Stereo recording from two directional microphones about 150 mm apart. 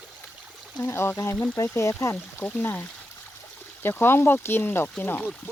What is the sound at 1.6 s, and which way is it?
Speech, 20° left (ahead or behind).